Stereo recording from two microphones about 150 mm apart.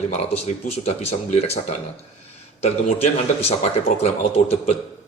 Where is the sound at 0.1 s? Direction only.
50° left (ahead or behind).